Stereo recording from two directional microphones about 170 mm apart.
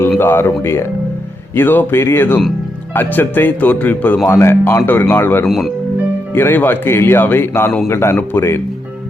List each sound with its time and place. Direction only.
0.2 s speech: 15° left (ahead or behind)
5.5 s speech: centre (ahead or behind)
6.3 s speech: 10° left (ahead or behind)